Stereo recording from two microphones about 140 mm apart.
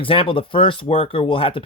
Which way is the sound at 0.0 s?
40° left (ahead or behind).